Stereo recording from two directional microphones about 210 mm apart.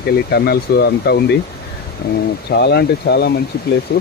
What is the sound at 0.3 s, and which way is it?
Speech, 50° left (ahead or behind).